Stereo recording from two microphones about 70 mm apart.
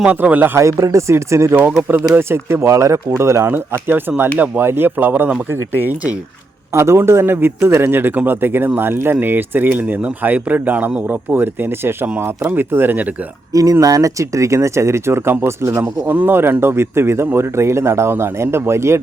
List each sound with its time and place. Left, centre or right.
0.1 s speech: right
0.5 s speech: right
3.2 s speech: right
3.4 s speech: right
6.7 s speech: right
13.5 s speech: right
16.0 s speech: right